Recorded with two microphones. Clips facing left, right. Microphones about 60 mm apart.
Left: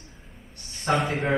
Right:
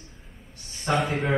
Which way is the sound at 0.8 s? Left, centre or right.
Centre.